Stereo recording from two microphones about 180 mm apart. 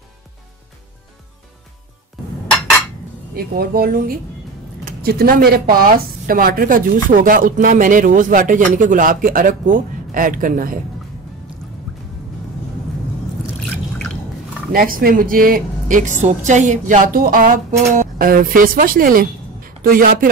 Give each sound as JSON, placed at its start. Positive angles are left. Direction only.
{"t": 3.3, "sound": "a woman's voice", "side_deg": -60}
{"t": 11.9, "sound": "music", "side_deg": 0}
{"t": 14.7, "sound": "a woman's voice", "side_deg": -55}